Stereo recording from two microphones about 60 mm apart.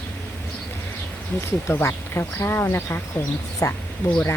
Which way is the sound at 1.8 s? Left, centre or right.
Left.